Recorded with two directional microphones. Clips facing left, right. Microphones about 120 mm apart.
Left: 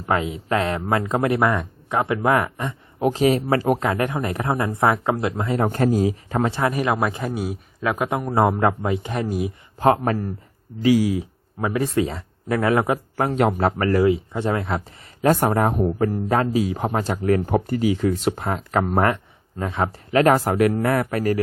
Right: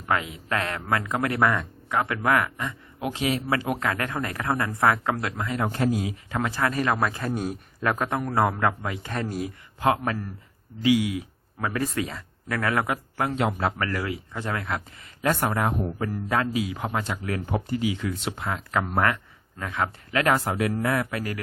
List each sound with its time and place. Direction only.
0.0 s speech: 25° left (ahead or behind)
3.0 s speech: 40° left (ahead or behind)
3.8 s speech: 20° left (ahead or behind)
5.6 s speech: 45° left (ahead or behind)
6.5 s a man's voice: 20° left (ahead or behind)
9.7 s speech: 40° left (ahead or behind)
15.3 s speech: 40° left (ahead or behind)
19.0 s speech: 25° left (ahead or behind)
20.6 s speech: 55° left (ahead or behind)